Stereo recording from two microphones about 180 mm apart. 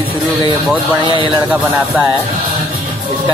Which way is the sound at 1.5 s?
10° right (ahead or behind).